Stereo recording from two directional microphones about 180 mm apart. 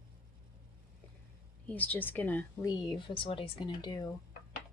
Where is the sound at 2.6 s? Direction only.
20° left (ahead or behind).